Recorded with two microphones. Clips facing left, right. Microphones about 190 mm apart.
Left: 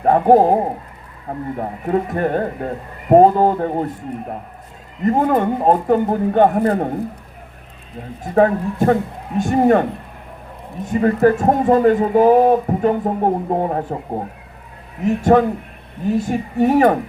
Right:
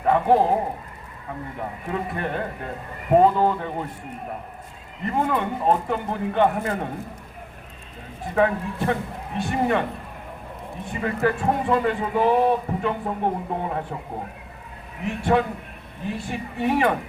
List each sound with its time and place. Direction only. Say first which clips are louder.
0.0 s speech: left 6 dB; 45° left (ahead or behind)
5.0 s speech: left 8 dB; 45° left (ahead or behind)
8.2 s speech: left 6 dB; 40° left (ahead or behind)
10.8 s speech: left 10 dB; 45° left (ahead or behind)
15.0 s speech: left 8 dB; 40° left (ahead or behind)